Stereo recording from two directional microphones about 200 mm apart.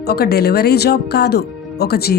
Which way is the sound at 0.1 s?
50° left (ahead or behind).